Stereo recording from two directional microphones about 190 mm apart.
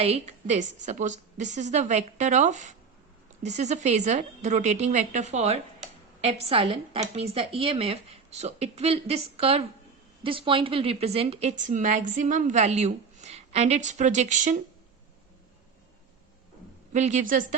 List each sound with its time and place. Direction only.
0.0 s a woman's voice: 35° right (ahead or behind)
16.9 s a woman's voice: 40° right (ahead or behind)